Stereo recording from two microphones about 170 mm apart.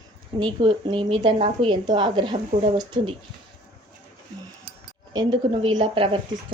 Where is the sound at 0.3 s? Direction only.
30° right (ahead or behind).